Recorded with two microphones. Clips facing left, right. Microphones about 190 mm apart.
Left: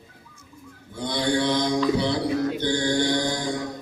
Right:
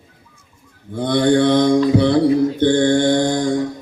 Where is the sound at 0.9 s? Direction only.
55° right (ahead or behind).